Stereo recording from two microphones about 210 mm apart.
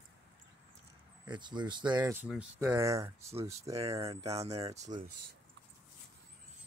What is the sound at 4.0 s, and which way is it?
Speech, 30° right (ahead or behind).